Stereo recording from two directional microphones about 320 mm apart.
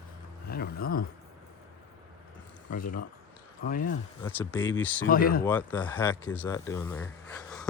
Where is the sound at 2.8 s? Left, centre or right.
Left.